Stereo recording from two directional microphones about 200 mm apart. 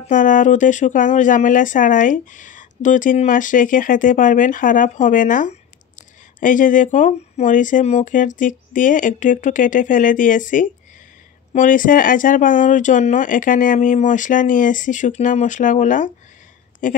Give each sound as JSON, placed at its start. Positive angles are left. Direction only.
{"t": 0.0, "sound": "speech", "side_deg": 40}